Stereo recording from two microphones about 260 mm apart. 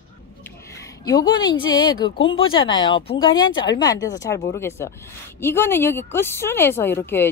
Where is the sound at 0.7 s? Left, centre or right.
Centre.